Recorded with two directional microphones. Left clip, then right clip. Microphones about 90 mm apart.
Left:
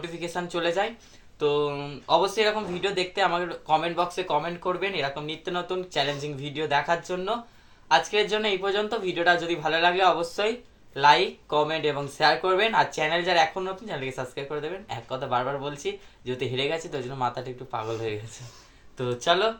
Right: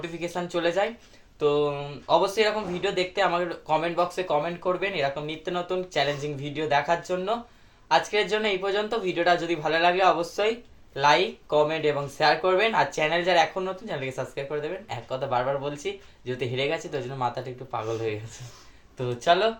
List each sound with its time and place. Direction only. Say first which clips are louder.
0.0 s speech: right 1 dB; 30° left (ahead or behind)